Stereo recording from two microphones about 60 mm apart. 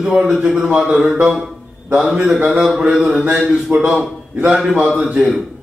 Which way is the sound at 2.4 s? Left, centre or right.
Centre.